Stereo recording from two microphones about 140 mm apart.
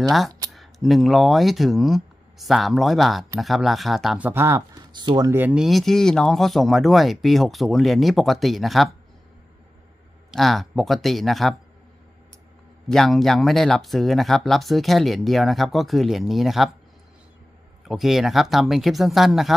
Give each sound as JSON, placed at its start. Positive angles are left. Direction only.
{"t": 0.5, "sound": "speech", "side_deg": 0}
{"t": 4.3, "sound": "speech", "side_deg": -20}
{"t": 5.3, "sound": "speech", "side_deg": -10}
{"t": 10.3, "sound": "speech", "side_deg": 0}
{"t": 12.8, "sound": "speech", "side_deg": 0}
{"t": 17.8, "sound": "speech", "side_deg": 0}